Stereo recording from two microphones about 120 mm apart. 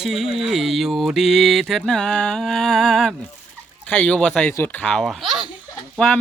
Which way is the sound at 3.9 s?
10° left (ahead or behind).